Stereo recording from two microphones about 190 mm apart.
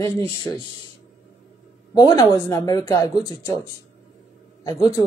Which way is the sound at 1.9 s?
20° left (ahead or behind).